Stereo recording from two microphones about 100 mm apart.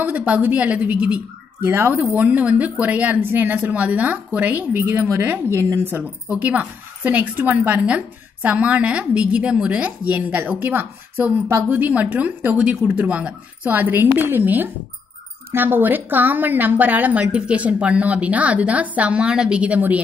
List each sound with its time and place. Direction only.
0.0 s speech: 15° right (ahead or behind)